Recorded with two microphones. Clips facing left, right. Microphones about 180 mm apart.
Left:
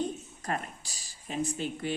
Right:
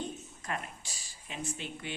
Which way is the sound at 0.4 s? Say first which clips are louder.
Left 4 dB; 40° left (ahead or behind).